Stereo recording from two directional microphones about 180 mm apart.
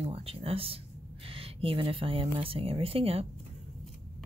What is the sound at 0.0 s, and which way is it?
Speech, 35° right (ahead or behind).